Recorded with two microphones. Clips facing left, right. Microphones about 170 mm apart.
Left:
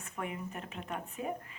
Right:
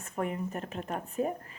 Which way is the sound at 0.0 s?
40° right (ahead or behind).